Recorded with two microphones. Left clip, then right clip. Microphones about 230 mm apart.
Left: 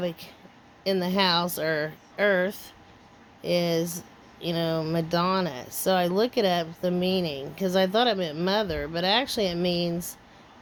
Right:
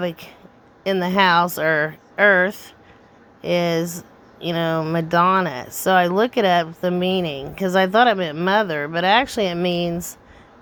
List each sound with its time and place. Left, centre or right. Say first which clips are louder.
0.9 s speech: right 7 dB; centre